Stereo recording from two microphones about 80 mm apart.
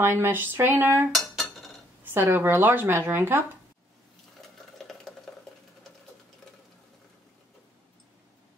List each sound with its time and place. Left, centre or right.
0.0 s speech: right
1.3 s chink: centre
2.1 s speech: right
4.4 s sewing machine: centre